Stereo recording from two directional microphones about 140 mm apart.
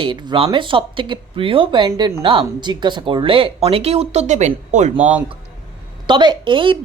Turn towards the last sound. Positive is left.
turn(degrees=-35)  # may be behind; listen again after turning